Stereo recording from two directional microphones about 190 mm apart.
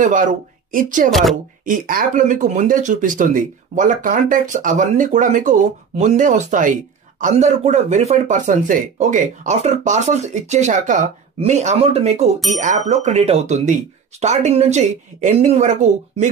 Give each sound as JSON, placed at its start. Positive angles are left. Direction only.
{"t": 0.0, "sound": "speech", "side_deg": -40}